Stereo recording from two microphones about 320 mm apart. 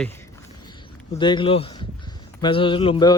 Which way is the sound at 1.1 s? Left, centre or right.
Centre.